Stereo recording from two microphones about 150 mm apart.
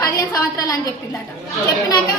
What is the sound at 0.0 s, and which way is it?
Speech, 20° left (ahead or behind).